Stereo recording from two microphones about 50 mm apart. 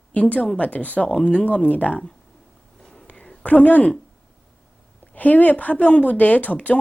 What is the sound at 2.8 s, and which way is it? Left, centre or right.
Whispering, centre.